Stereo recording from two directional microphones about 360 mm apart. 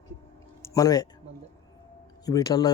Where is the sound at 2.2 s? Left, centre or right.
Centre.